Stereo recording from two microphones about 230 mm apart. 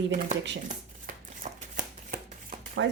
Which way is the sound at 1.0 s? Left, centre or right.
Right.